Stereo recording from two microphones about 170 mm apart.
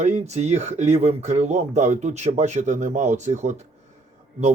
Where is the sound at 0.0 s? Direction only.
40° right (ahead or behind).